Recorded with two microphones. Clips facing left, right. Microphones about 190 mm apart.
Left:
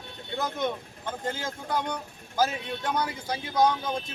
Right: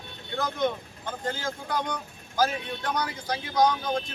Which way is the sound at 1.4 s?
25° left (ahead or behind).